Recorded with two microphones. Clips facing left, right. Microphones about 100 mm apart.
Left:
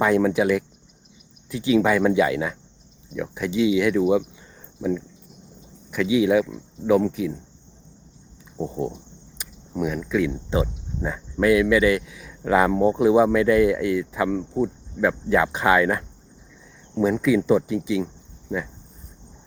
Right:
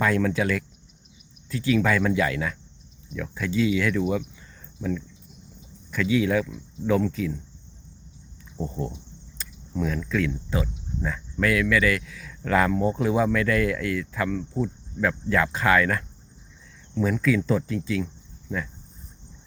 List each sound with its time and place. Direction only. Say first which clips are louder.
0.0 s speech: left 4 dB; 20° left (ahead or behind)
8.5 s speech: left 4 dB; 15° left (ahead or behind)
9.4 s cricket: left 3 dB; 15° left (ahead or behind)
10.5 s speech: left 4 dB; 20° left (ahead or behind)